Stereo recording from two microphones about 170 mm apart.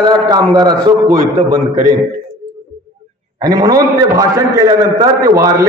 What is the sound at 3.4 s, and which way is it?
A man's voice, 20° right (ahead or behind).